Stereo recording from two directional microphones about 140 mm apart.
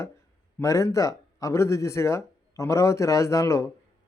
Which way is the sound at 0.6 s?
20° left (ahead or behind).